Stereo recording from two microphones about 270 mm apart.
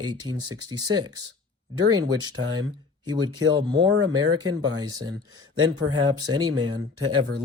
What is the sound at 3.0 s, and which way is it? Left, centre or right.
Speech, centre.